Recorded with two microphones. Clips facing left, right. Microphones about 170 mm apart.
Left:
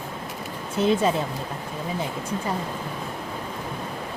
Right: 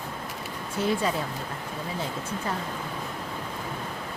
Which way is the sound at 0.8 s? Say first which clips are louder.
Left 5 dB; 20° left (ahead or behind).